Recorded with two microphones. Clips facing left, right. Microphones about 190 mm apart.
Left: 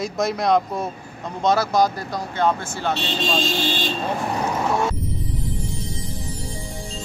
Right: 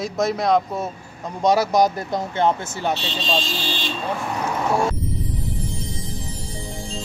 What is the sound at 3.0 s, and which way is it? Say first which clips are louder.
Speech: left 2 dB; 50° left (ahead or behind).